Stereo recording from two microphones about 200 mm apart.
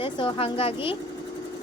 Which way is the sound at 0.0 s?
25° left (ahead or behind).